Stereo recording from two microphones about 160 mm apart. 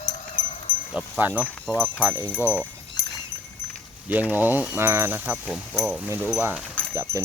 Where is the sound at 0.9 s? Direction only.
5° right (ahead or behind).